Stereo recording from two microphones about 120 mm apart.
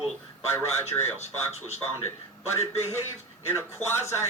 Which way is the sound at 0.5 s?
20° left (ahead or behind).